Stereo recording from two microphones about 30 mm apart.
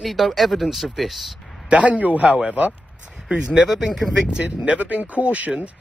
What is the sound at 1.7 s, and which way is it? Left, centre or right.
Speech, right.